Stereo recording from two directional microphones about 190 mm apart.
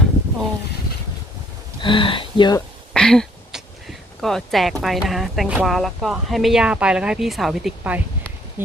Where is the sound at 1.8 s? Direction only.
25° left (ahead or behind).